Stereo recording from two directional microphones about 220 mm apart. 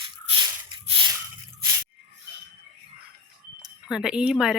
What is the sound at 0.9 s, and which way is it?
Squish, 20° right (ahead or behind).